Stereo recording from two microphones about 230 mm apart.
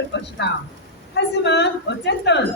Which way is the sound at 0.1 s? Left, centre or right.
Left.